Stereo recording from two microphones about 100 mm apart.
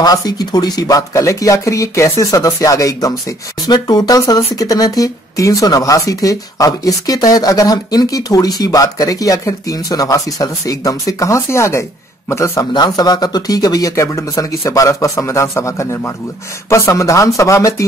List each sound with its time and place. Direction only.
0.0 s a man's voice: 40° left (ahead or behind)
12.7 s speech: 45° left (ahead or behind)